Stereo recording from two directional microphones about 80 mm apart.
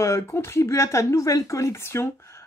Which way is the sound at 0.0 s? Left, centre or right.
Left.